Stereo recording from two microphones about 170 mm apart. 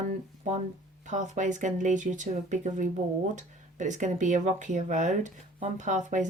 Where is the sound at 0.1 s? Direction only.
45° right (ahead or behind).